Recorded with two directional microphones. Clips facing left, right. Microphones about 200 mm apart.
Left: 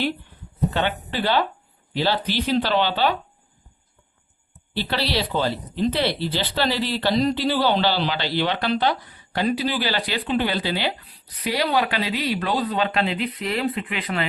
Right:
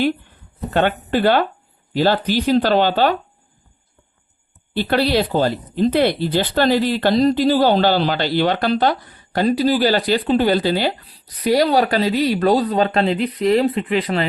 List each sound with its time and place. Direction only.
0.7 s speech: 50° right (ahead or behind)
4.7 s speech: 50° right (ahead or behind)